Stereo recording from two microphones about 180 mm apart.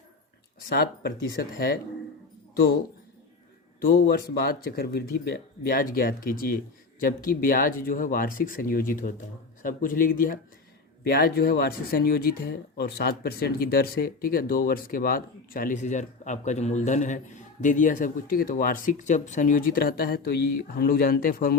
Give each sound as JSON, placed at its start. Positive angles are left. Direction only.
{"t": 0.7, "sound": "speech", "side_deg": 60}
{"t": 3.8, "sound": "speech", "side_deg": 55}